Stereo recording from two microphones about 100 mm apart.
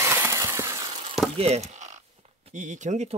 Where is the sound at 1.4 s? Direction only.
90° right.